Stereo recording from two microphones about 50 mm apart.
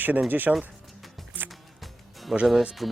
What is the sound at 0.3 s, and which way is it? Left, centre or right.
Speech, right.